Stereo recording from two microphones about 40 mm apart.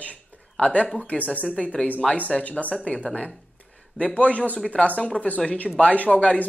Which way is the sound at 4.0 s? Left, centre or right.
Left.